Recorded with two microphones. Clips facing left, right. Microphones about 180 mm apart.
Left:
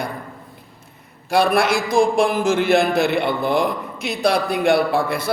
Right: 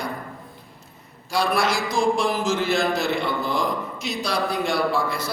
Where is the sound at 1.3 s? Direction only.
55° left (ahead or behind).